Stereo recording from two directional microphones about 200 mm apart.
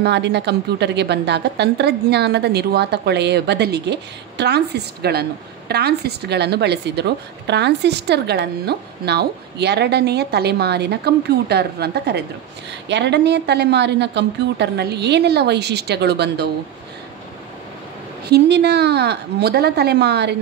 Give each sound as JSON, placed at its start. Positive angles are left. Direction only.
{"t": 0.0, "sound": "a woman's voice", "side_deg": -55}
{"t": 18.3, "sound": "a woman's voice", "side_deg": -55}